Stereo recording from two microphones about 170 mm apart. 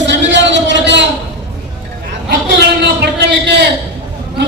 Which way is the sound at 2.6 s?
80° right.